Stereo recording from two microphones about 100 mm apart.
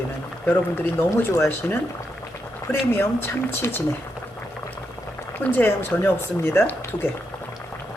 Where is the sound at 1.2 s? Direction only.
25° left (ahead or behind).